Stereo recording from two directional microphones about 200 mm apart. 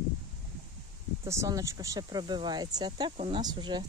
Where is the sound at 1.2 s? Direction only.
15° right (ahead or behind).